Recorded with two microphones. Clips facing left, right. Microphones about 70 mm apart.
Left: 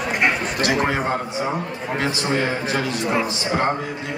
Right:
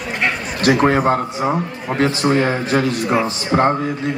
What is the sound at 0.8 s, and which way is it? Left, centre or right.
A man's voice, right.